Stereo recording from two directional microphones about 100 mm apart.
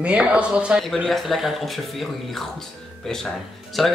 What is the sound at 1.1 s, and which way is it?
Speech, centre (ahead or behind).